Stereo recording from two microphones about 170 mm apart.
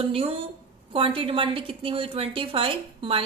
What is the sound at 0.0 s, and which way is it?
A woman's voice, 35° right (ahead or behind).